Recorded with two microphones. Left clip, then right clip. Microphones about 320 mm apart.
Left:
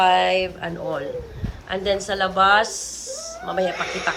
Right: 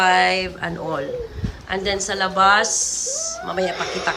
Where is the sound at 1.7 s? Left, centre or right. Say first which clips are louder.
Even; centre.